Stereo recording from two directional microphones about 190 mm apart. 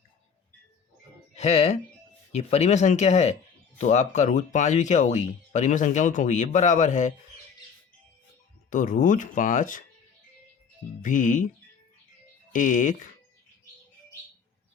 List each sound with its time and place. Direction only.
1.4 s speech: 35° left (ahead or behind)
8.7 s speech: 45° left (ahead or behind)
11.0 s speech: 45° left (ahead or behind)
12.5 s speech: 40° left (ahead or behind)